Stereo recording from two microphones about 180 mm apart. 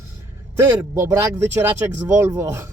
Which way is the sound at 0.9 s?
15° right (ahead or behind).